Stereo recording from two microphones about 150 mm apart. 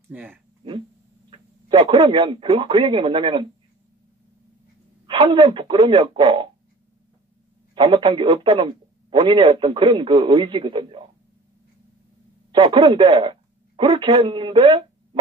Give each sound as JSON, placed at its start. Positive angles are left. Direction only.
{"t": 0.1, "sound": "speech", "side_deg": -10}
{"t": 1.3, "sound": "speech", "side_deg": -35}
{"t": 5.0, "sound": "a man's voice", "side_deg": -35}
{"t": 7.7, "sound": "a man's voice", "side_deg": -35}
{"t": 12.5, "sound": "a man's voice", "side_deg": -35}